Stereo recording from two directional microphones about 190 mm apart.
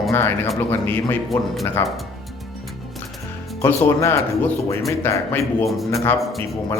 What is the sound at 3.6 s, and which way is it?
Speech, 15° left (ahead or behind).